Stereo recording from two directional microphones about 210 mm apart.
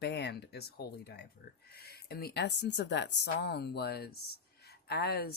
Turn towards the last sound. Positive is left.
turn(degrees=50)  # may be behind; listen again after turning